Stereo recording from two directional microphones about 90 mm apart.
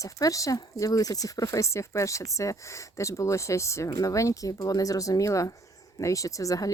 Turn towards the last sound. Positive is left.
turn(degrees=40)  # may be behind; listen again after turning